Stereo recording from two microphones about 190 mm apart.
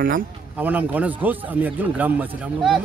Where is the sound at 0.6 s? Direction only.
10° right (ahead or behind).